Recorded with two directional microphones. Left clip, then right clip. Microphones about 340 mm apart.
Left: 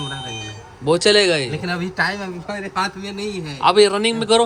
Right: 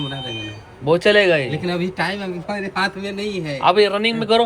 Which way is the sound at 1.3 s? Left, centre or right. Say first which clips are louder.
Right 2 dB; centre.